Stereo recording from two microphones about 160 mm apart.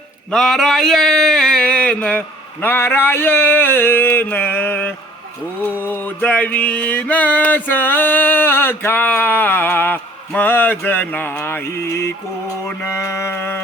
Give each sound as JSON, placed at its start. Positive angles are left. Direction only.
{"t": 0.3, "sound": "mantra", "side_deg": 5}